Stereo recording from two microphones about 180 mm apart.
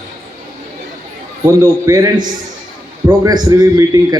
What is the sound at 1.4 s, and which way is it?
A man's voice, 15° right (ahead or behind).